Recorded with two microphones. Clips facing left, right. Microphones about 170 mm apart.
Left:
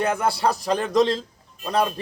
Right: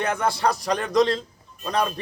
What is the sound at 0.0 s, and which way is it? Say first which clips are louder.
Speech: left 1 dB; 5° left (ahead or behind).